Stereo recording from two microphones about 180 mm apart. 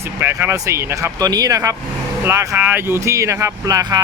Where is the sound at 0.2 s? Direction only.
15° right (ahead or behind).